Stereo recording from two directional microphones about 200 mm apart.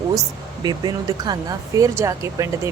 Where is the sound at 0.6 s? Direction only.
20° right (ahead or behind).